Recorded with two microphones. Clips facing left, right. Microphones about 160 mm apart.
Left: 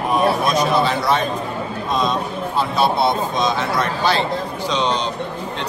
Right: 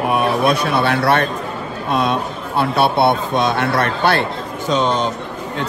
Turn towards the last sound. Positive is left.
turn(degrees=-50)  # may be behind; listen again after turning